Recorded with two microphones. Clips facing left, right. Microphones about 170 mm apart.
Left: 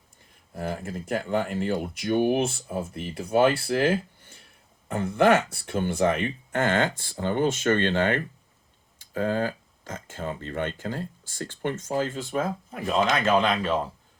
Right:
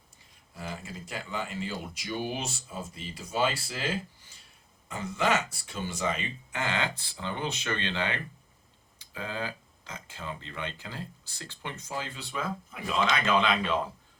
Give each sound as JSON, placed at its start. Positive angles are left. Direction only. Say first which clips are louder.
{"t": 0.5, "sound": "speech", "louder": "left 8 dB", "side_deg": 55}